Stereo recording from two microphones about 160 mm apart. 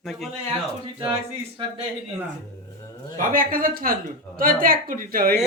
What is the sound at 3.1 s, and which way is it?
A woman's voice, 60° right (ahead or behind).